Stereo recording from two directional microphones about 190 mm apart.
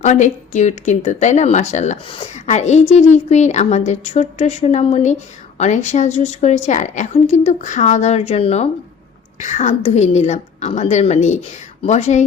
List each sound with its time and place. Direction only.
0.0 s a woman's voice: 40° left (ahead or behind)